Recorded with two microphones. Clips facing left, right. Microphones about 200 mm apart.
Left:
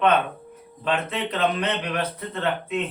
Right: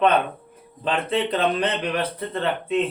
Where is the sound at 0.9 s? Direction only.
30° right (ahead or behind).